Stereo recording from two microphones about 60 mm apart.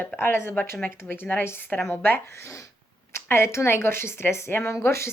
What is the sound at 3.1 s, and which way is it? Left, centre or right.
Speech, left.